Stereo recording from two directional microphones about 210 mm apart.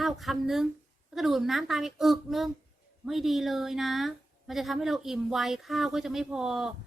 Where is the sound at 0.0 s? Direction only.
Centre (ahead or behind).